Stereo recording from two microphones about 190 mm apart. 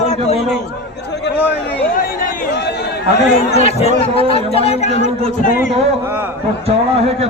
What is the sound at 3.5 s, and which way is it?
Speech, 35° left (ahead or behind).